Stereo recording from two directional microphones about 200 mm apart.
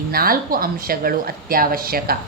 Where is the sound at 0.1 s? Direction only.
45° right (ahead or behind).